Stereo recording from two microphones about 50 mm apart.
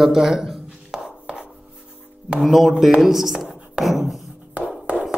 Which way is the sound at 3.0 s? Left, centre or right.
Centre.